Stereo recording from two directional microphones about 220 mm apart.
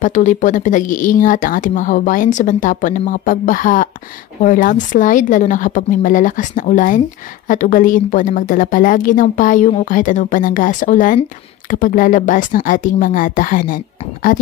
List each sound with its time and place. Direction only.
0.0 s speech: 35° left (ahead or behind)